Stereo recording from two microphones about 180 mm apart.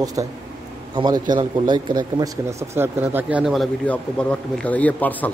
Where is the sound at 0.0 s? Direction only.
20° right (ahead or behind).